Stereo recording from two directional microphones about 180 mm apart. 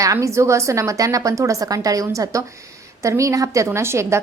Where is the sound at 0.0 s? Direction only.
15° right (ahead or behind).